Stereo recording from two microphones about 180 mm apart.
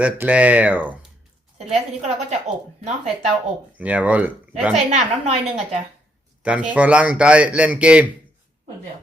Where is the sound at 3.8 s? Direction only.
10° right (ahead or behind).